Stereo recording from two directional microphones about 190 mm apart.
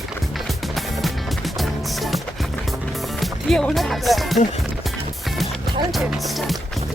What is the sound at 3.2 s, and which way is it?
Music, 5° left (ahead or behind).